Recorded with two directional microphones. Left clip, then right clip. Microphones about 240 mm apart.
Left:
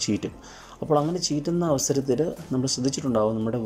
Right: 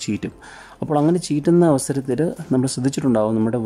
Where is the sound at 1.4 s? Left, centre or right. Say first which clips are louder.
Right 11 dB; centre.